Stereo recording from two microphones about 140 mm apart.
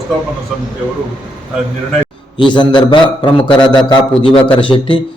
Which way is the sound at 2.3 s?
35° left (ahead or behind).